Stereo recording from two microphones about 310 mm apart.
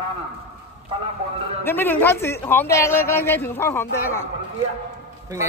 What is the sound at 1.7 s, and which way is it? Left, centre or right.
A man's voice, centre.